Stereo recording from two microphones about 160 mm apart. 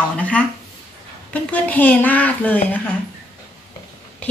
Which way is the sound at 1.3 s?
10° left (ahead or behind).